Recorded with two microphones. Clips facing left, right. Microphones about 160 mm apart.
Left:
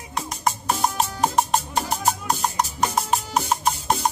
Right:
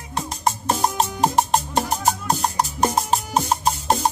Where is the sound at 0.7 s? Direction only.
35° right (ahead or behind).